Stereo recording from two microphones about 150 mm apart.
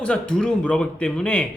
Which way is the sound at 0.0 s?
5° left (ahead or behind).